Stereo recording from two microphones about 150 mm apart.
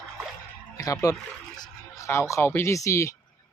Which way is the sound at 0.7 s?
20° left (ahead or behind).